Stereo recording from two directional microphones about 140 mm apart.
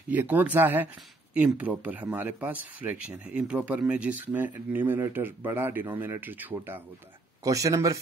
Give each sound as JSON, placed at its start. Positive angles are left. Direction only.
{"t": 0.1, "sound": "speech", "side_deg": -10}